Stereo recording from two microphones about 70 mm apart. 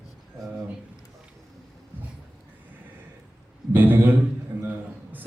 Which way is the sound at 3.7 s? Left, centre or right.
Right.